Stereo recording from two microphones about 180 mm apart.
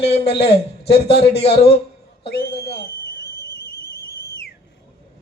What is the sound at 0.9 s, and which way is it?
Speech, 65° left (ahead or behind).